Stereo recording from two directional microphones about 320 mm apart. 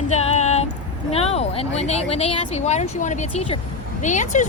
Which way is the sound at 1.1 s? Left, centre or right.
Centre.